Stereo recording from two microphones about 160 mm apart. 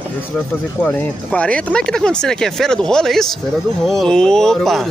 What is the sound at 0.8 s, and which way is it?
Speech, 5° left (ahead or behind).